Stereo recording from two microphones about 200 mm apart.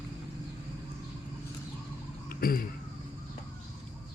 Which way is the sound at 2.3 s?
45° left (ahead or behind).